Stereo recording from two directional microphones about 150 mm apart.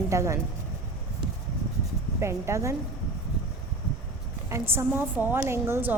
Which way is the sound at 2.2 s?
20° right (ahead or behind).